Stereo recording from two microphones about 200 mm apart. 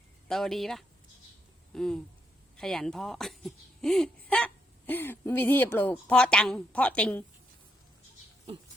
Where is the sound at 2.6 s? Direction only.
Centre (ahead or behind).